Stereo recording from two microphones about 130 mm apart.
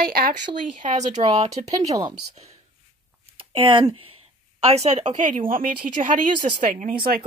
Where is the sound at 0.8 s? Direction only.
65° right (ahead or behind).